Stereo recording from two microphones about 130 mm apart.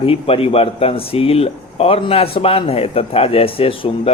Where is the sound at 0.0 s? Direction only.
45° left (ahead or behind).